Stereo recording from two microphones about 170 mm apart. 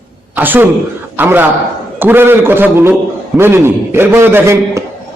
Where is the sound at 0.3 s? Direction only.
10° right (ahead or behind).